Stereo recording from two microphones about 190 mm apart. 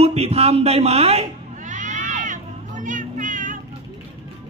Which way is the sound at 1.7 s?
40° right (ahead or behind).